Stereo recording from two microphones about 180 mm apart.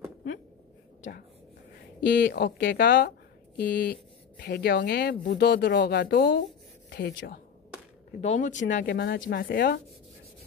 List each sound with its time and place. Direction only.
2.0 s speech: 65° left (ahead or behind)
8.2 s speech: 40° left (ahead or behind)
8.8 s speech: 70° left (ahead or behind)